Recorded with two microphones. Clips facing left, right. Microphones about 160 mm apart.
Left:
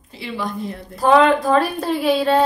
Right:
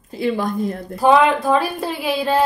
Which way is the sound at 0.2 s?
45° right (ahead or behind).